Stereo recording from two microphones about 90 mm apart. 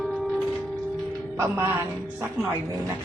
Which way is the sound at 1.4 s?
25° right (ahead or behind).